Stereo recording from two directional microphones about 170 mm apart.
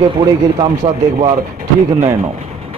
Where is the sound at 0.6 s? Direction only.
30° right (ahead or behind).